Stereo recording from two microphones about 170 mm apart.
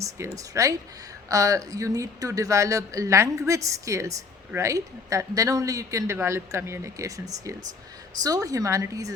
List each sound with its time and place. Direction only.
0.3 s speech: 20° right (ahead or behind)